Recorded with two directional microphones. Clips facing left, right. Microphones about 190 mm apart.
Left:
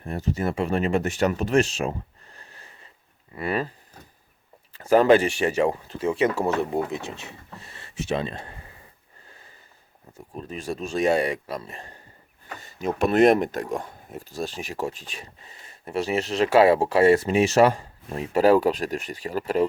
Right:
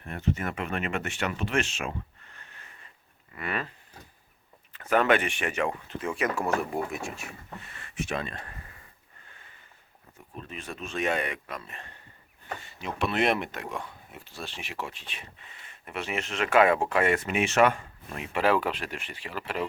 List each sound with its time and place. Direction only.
0.0 s speech: 35° left (ahead or behind)
4.7 s speech: 30° left (ahead or behind)
10.3 s speech: 40° left (ahead or behind)